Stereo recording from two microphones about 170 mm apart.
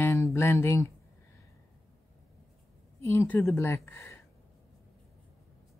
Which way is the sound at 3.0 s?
15° left (ahead or behind).